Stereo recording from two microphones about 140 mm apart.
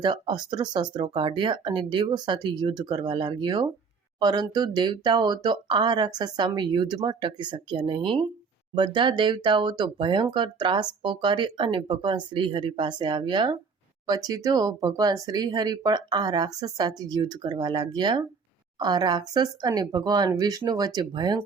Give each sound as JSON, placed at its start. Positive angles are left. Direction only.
{"t": 0.0, "sound": "speech", "side_deg": -30}